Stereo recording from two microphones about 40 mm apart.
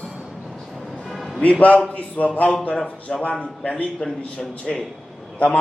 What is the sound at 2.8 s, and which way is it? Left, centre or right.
Speech, left.